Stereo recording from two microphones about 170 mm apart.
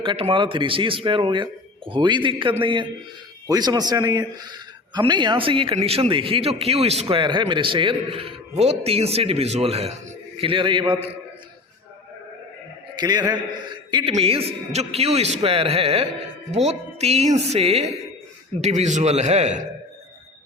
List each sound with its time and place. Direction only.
0.0 s a man's voice: 30° right (ahead or behind)
13.0 s a man's voice: 25° right (ahead or behind); by 19.6 s 40° right (ahead or behind)